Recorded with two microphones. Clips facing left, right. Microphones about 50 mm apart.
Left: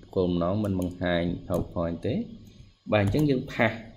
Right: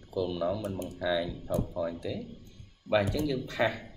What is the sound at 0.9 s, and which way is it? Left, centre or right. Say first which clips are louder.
Speech: left 1 dB; left.